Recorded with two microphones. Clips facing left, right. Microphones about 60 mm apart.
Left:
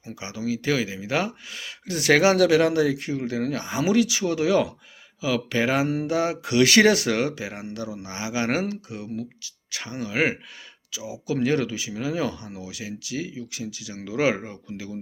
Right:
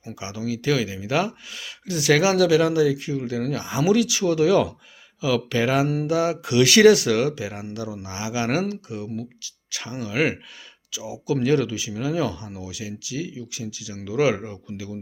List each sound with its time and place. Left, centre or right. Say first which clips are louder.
0.0 s speech: even; left
2.0 s speech: even; left